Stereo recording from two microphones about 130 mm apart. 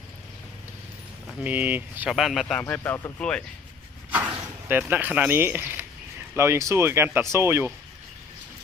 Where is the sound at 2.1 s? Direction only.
Centre (ahead or behind).